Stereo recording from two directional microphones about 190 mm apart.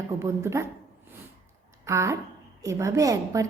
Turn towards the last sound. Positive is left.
turn(degrees=-15)  # may be behind; listen again after turning